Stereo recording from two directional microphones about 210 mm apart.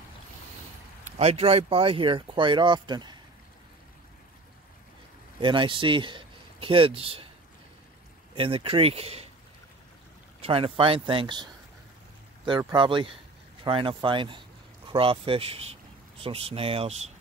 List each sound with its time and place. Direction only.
1.1 s speech: 30° right (ahead or behind)
5.4 s speech: 25° right (ahead or behind)
8.4 s speech: 25° right (ahead or behind)
10.4 s speech: 25° right (ahead or behind)